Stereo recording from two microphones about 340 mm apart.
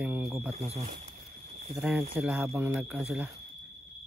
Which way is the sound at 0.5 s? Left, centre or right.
Centre.